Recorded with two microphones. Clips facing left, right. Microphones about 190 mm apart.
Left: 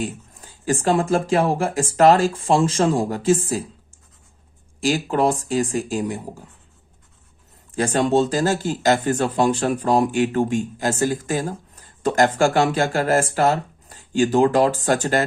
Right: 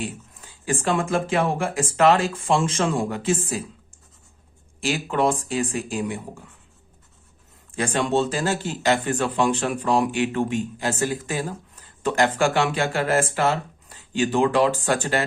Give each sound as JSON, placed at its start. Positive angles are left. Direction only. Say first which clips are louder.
{"t": 0.0, "sound": "speech", "louder": "left 4 dB", "side_deg": 40}
{"t": 4.8, "sound": "speech", "louder": "left 3 dB", "side_deg": 40}
{"t": 7.8, "sound": "speech", "louder": "left 4 dB", "side_deg": 40}